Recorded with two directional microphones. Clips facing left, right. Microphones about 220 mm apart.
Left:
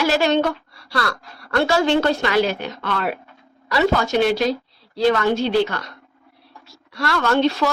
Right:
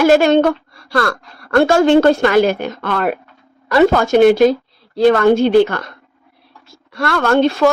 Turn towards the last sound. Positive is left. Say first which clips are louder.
# right 5 dB
turn(degrees=-50)  # may be behind; listen again after turning